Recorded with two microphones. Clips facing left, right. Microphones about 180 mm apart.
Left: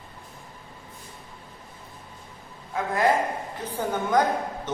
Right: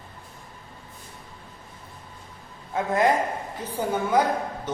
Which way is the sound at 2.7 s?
20° right (ahead or behind).